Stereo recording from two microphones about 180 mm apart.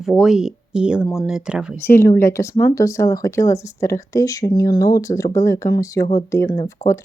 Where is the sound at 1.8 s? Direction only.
15° left (ahead or behind).